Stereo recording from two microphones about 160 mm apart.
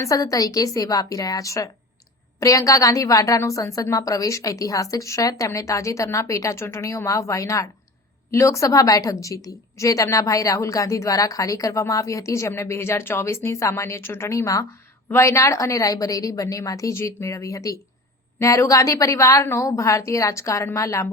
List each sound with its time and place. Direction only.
0.0 s a woman's voice: 20° left (ahead or behind)